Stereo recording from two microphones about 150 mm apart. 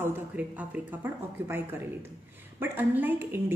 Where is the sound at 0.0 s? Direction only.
10° right (ahead or behind).